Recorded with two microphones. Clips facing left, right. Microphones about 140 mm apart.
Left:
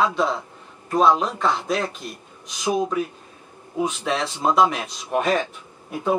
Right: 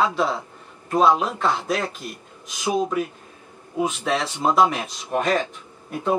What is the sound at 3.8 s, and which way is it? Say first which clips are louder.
Speech: right 1 dB; centre (ahead or behind).